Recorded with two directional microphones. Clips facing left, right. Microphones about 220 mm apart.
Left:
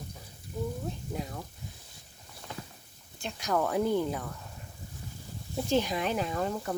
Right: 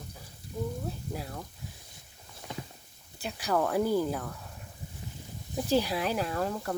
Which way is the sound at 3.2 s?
5° right (ahead or behind).